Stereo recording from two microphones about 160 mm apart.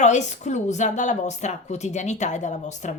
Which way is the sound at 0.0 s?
45° left (ahead or behind).